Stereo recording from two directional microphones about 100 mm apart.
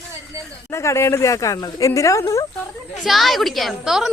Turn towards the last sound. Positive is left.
turn(degrees=-5)  # may be behind; listen again after turning